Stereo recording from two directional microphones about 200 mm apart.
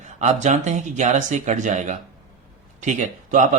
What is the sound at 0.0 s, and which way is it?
Speech, 35° right (ahead or behind).